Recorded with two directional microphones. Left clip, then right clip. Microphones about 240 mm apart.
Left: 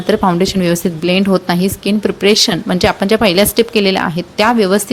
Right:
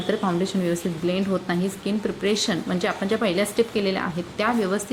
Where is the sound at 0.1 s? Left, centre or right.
Left.